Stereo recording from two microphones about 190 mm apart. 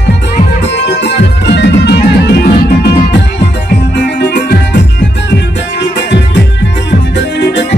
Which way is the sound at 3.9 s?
60° left (ahead or behind).